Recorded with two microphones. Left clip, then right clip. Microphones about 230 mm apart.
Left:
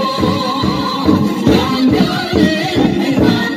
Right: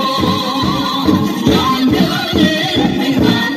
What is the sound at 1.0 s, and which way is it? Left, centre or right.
Music, right.